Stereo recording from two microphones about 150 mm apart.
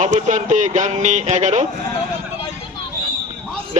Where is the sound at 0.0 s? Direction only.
55° right (ahead or behind).